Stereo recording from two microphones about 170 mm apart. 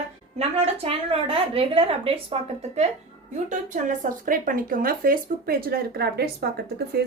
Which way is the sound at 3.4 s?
50° right (ahead or behind).